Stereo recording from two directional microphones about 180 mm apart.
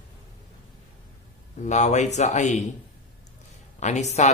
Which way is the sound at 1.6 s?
40° left (ahead or behind).